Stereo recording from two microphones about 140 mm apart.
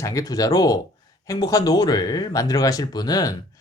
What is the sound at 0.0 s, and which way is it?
Speech, 25° left (ahead or behind).